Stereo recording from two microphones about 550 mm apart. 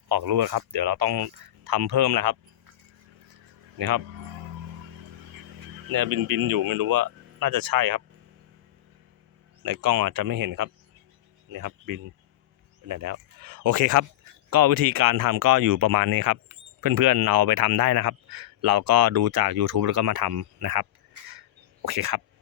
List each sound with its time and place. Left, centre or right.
0.1 s speech: right
3.8 s speech: right
5.9 s speech: right
9.6 s speech: right